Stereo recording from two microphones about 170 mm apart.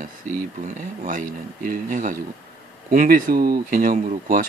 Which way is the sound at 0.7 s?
55° right (ahead or behind).